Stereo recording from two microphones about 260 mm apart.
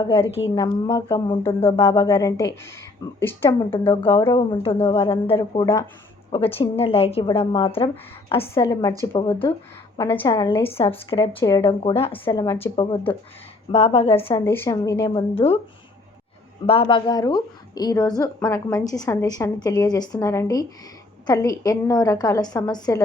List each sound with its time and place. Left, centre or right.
0.0 s a woman's voice: centre
3.7 s a woman's voice: centre
10.0 s a woman's voice: centre
14.4 s a woman's voice: centre
15.4 s a woman's voice: left
16.6 s a woman's voice: left